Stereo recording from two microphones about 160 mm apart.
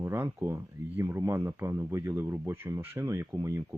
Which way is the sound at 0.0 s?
15° right (ahead or behind).